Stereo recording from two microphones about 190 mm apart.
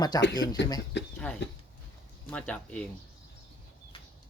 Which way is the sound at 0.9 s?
65° left (ahead or behind).